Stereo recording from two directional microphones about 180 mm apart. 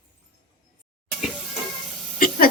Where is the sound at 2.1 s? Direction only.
50° left (ahead or behind).